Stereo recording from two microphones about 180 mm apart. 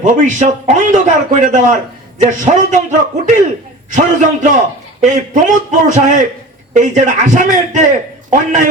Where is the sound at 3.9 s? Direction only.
45° right (ahead or behind).